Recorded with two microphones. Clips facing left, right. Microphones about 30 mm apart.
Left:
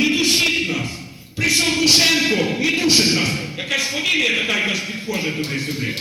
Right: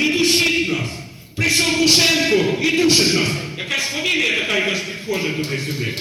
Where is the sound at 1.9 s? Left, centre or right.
Centre.